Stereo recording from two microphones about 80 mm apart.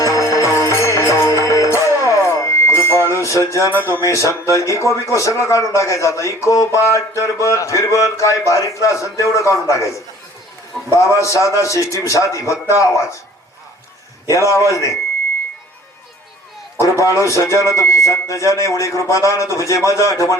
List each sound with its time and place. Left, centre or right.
0.0 s music: left
3.8 s speech: left
10.9 s speech: left
14.7 s speech: left
16.8 s speech: left